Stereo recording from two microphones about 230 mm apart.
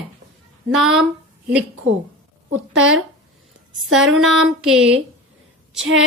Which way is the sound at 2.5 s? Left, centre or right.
Right.